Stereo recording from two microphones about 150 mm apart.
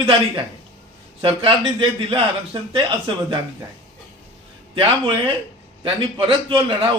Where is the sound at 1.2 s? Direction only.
35° right (ahead or behind).